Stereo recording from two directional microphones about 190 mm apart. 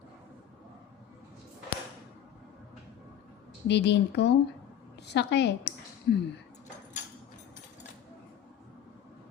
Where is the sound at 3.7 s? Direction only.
65° left (ahead or behind).